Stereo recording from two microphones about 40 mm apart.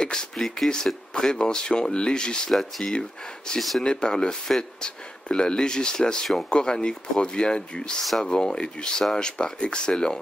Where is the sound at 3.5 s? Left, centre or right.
Centre.